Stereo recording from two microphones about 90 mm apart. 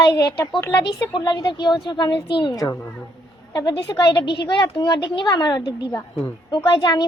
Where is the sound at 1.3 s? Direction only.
55° left (ahead or behind).